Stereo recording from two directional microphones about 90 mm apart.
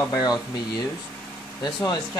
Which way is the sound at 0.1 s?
45° left (ahead or behind).